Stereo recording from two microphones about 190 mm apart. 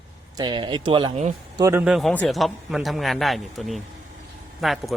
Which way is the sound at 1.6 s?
10° right (ahead or behind).